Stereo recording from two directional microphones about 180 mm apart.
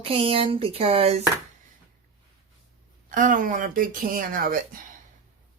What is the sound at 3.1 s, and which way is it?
Speech, 45° right (ahead or behind).